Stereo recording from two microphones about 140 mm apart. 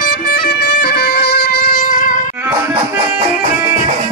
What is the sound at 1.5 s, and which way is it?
Wind instrument, 90° left.